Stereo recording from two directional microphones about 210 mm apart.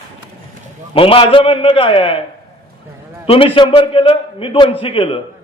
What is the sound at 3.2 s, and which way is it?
A man's voice, 25° left (ahead or behind).